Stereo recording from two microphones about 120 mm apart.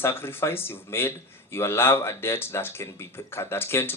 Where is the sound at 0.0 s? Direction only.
20° left (ahead or behind).